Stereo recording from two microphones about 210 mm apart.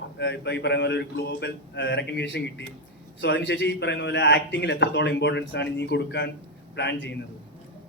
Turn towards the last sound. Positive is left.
turn(degrees=55)  # may be behind; listen again after turning